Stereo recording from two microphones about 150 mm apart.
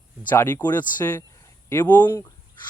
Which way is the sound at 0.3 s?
15° left (ahead or behind).